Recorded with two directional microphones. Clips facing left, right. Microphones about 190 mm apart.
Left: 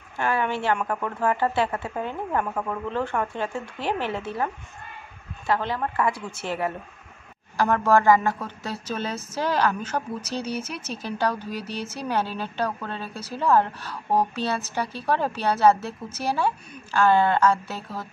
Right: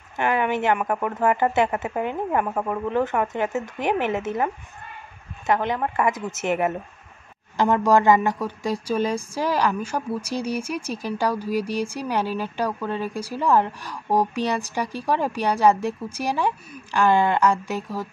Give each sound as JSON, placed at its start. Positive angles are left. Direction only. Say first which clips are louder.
{"t": 0.2, "sound": "speech", "louder": "right 3 dB", "side_deg": -15}
{"t": 5.5, "sound": "a woman's voice", "louder": "right 3 dB", "side_deg": -15}